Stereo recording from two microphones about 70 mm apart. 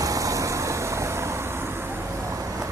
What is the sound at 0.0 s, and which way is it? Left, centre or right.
Vehicle, right.